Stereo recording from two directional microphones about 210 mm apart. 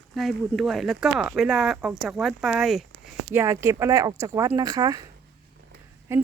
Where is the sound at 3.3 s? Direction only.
15° right (ahead or behind).